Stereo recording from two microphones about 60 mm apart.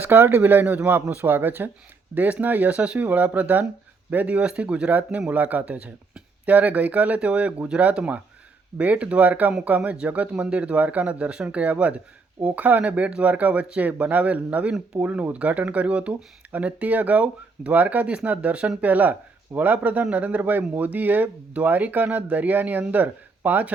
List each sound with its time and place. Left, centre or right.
0.0 s speech: right
0.8 s speech: right